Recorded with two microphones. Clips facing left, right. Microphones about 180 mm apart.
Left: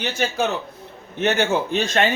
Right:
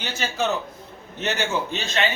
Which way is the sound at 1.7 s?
50° left (ahead or behind).